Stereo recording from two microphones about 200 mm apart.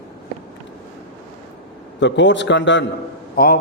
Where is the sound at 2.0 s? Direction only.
65° left (ahead or behind).